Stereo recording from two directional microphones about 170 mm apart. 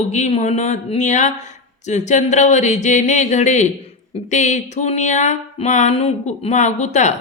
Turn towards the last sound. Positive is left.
turn(degrees=45)  # may be behind; listen again after turning